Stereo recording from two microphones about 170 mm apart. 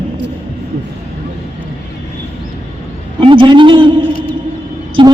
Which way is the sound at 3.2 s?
30° right (ahead or behind).